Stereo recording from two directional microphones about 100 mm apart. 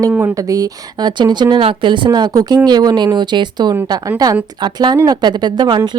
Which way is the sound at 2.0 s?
40° right (ahead or behind).